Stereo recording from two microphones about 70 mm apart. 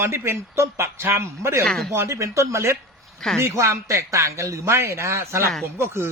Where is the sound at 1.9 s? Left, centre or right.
Right.